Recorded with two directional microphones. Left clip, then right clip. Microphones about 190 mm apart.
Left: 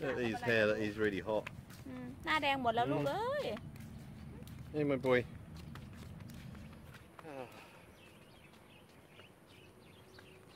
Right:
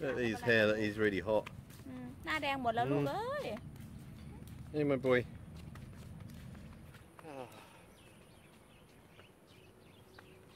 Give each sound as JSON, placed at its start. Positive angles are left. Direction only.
{"t": 0.0, "sound": "speech", "side_deg": -25}
{"t": 2.0, "sound": "speech", "side_deg": 10}
{"t": 4.7, "sound": "speech", "side_deg": -30}
{"t": 7.2, "sound": "a sound", "side_deg": -10}